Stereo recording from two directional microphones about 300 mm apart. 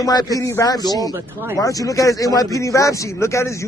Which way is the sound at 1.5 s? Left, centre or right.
Centre.